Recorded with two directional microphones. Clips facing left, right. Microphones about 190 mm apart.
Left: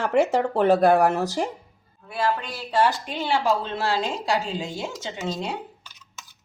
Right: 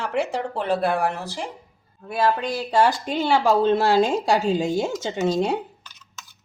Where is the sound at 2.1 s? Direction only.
40° right (ahead or behind).